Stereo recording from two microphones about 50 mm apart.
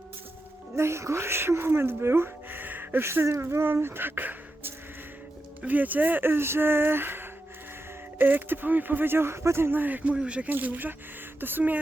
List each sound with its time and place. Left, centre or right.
0.8 s speech: right
3.0 s speech: right
9.8 s speech: right
10.5 s speech: right